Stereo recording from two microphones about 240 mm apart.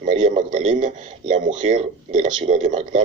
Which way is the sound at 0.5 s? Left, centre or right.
Right.